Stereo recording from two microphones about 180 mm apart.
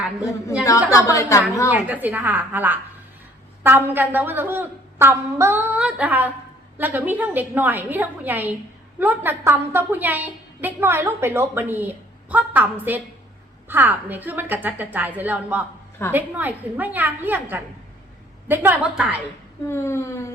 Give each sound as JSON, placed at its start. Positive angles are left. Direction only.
{"t": 0.2, "sound": "a woman's voice", "side_deg": 15}
{"t": 1.7, "sound": "a woman's voice", "side_deg": -10}
{"t": 19.6, "sound": "a woman's voice", "side_deg": 15}